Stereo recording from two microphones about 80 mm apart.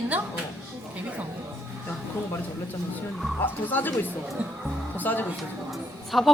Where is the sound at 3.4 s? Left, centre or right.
Left.